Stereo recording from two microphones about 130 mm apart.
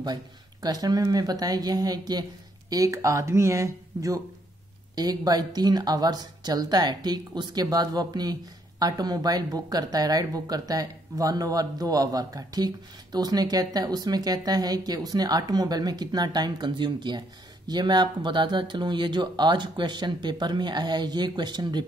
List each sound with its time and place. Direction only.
0.0 s a woman's voice: 30° right (ahead or behind)